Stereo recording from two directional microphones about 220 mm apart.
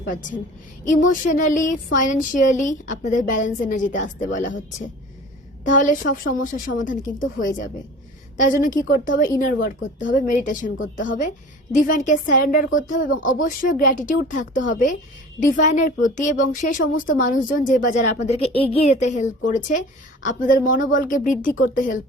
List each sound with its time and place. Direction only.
0.0 s speech: 35° left (ahead or behind)